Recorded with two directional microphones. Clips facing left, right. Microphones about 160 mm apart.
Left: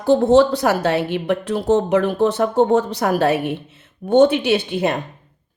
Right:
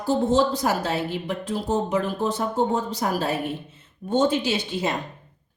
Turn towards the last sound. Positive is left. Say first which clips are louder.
# left 7 dB
turn(degrees=60)  # may be behind; listen again after turning